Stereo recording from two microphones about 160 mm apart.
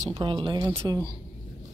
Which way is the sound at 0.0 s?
30° right (ahead or behind).